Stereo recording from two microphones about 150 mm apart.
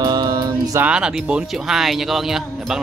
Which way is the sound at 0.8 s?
5° right (ahead or behind).